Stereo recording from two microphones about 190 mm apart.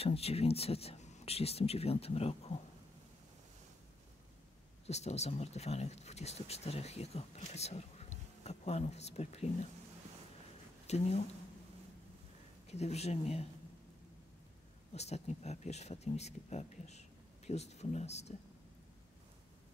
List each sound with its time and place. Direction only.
0.0 s speech: 30° left (ahead or behind)
4.8 s speech: 35° left (ahead or behind)
10.9 s speech: 35° left (ahead or behind)
12.6 s speech: 35° left (ahead or behind)
15.0 s speech: 35° left (ahead or behind)